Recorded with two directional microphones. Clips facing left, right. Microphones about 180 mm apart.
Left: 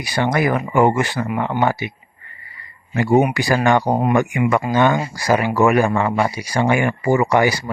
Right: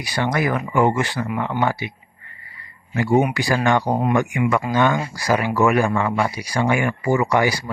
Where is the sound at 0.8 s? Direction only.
50° left (ahead or behind).